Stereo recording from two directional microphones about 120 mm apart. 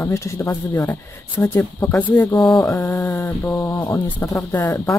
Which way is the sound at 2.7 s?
15° left (ahead or behind).